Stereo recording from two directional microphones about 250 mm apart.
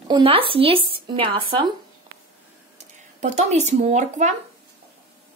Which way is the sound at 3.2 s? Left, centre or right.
Right.